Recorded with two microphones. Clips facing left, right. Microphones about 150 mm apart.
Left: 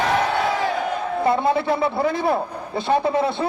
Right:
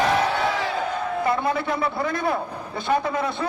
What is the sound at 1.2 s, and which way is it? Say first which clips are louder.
A man's voice: left 6 dB; 30° left (ahead or behind).